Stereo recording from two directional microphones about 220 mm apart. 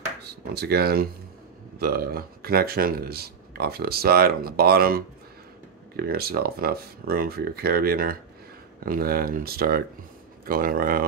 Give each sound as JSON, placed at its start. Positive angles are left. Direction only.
{"t": 0.3, "sound": "speech", "side_deg": -45}